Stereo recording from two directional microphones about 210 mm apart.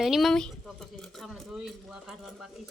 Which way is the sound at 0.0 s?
Centre (ahead or behind).